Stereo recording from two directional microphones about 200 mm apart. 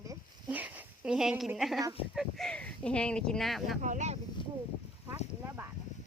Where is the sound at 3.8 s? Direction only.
35° right (ahead or behind).